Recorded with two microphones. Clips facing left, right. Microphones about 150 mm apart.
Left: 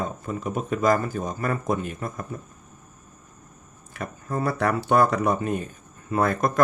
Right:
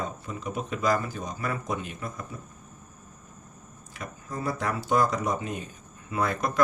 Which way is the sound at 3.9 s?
60° left (ahead or behind).